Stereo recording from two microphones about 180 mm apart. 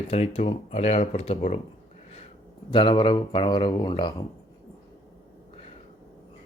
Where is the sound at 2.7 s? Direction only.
25° left (ahead or behind).